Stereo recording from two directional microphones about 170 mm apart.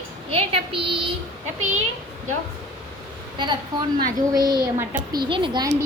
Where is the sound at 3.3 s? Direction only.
25° right (ahead or behind).